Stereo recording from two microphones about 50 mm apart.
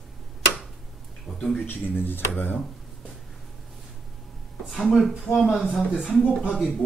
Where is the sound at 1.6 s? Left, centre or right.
Left.